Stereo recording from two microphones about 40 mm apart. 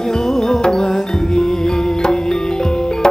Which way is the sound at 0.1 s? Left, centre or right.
Centre.